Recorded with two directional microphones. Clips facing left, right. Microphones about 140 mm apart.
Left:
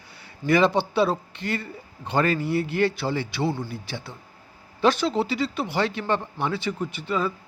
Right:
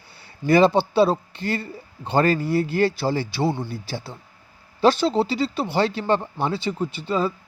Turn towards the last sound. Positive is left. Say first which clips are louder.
# right 3 dB
turn(degrees=-30)  # may be behind; listen again after turning